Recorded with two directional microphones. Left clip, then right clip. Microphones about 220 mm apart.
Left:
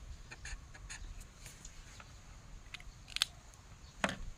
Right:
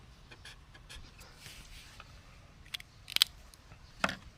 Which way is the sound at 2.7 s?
45° right (ahead or behind).